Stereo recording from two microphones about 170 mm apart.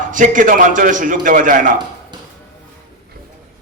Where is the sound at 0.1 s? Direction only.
50° right (ahead or behind).